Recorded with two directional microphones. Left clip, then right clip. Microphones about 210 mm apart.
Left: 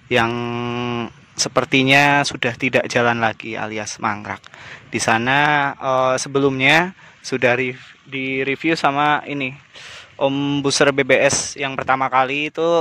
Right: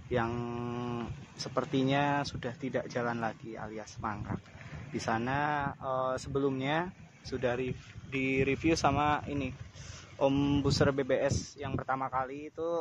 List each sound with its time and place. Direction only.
0.1 s mantra: 30° left (ahead or behind)
1.5 s speech: 30° left (ahead or behind)
8.1 s speech: 10° left (ahead or behind); by 12.7 s 30° left (ahead or behind)